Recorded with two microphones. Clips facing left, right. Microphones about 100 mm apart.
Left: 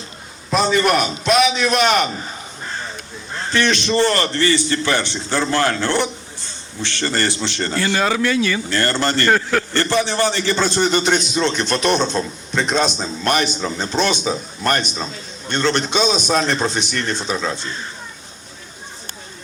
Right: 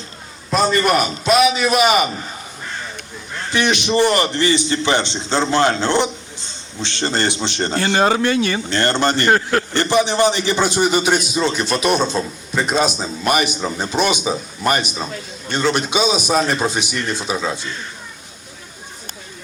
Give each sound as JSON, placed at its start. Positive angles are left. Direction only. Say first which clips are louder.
{"t": 0.5, "sound": "a man's voice", "louder": "even", "side_deg": 0}
{"t": 3.5, "sound": "a man's voice", "louder": "even", "side_deg": -15}